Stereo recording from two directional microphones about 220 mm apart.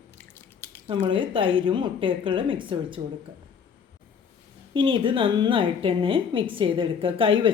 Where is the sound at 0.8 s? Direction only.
20° right (ahead or behind).